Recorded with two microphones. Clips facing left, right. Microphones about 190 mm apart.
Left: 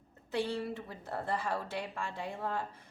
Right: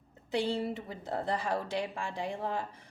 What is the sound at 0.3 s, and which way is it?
A woman's voice, 15° right (ahead or behind).